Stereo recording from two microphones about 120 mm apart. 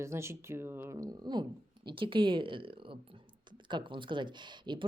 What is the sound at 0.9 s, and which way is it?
A woman's voice, 30° right (ahead or behind).